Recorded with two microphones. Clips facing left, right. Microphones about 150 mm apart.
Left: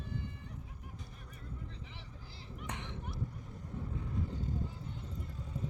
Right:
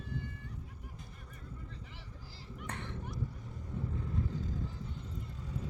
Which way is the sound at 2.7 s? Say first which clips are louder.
Right 1 dB; 15° left (ahead or behind).